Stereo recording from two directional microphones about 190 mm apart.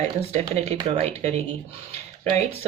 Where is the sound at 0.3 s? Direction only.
35° right (ahead or behind).